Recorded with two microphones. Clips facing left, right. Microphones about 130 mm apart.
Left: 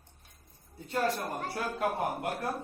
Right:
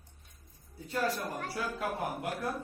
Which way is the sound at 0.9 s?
45° left (ahead or behind).